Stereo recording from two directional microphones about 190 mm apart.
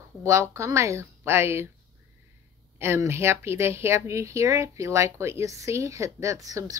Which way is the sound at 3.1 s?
15° right (ahead or behind).